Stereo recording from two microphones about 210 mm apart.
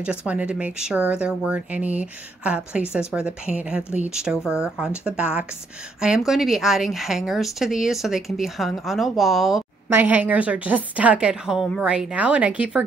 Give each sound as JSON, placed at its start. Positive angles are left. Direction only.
{"t": 0.3, "sound": "a woman's voice", "side_deg": -5}